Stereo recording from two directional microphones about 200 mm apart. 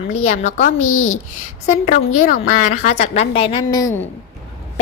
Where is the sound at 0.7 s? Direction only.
90° left.